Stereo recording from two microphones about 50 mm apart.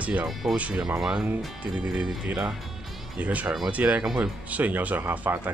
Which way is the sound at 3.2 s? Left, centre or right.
Right.